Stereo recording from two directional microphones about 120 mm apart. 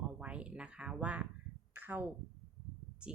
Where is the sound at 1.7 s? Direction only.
15° right (ahead or behind).